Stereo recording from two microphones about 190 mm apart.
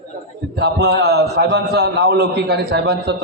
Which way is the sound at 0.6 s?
60° right (ahead or behind).